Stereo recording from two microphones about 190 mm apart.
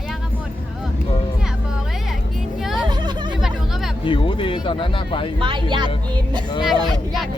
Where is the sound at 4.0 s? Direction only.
25° left (ahead or behind).